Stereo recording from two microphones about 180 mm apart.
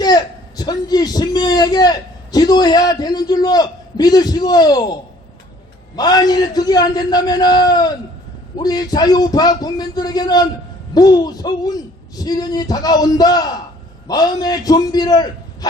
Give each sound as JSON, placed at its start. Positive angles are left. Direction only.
{"t": 0.0, "sound": "a man's voice", "side_deg": 20}
{"t": 6.0, "sound": "a man's voice", "side_deg": 20}